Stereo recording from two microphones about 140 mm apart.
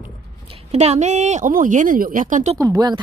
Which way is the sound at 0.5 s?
45° right (ahead or behind).